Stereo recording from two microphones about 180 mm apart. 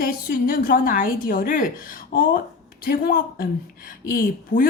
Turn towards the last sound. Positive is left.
turn(degrees=55)  # may be behind; listen again after turning